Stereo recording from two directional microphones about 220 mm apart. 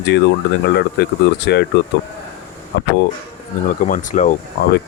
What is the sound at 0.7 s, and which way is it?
Speech, 50° left (ahead or behind).